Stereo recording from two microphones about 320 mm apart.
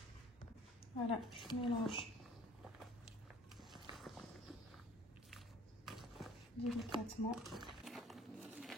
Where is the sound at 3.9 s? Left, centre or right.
Centre.